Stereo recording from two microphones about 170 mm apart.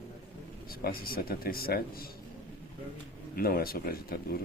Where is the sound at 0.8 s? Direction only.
60° left (ahead or behind).